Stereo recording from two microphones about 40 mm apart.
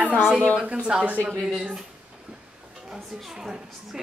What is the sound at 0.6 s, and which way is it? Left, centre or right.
Speech, right.